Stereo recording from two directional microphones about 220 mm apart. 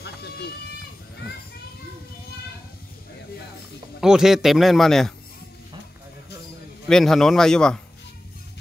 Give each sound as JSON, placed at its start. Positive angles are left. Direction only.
{"t": 0.0, "sound": "sheep", "side_deg": 50}
{"t": 4.0, "sound": "a man's voice", "side_deg": 0}
{"t": 6.9, "sound": "a man's voice", "side_deg": 0}